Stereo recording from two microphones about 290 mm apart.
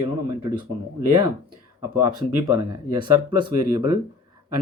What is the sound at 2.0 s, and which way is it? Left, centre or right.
Speech, centre.